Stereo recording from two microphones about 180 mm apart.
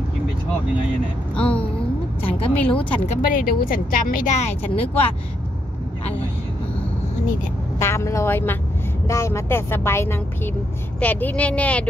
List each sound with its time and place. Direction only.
1.3 s speech: 5° left (ahead or behind)
2.2 s speech: 30° left (ahead or behind)
3.3 s speech: 50° left (ahead or behind); by 5.1 s 35° left (ahead or behind)
7.8 s speech: 15° left (ahead or behind)